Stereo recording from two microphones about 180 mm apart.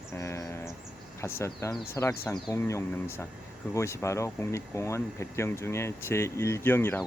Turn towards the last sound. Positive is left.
turn(degrees=10)  # may be behind; listen again after turning